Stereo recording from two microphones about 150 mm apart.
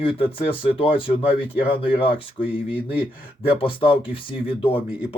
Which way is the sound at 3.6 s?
35° left (ahead or behind).